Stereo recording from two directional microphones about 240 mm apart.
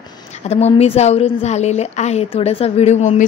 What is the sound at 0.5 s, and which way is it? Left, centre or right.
A woman's voice, left.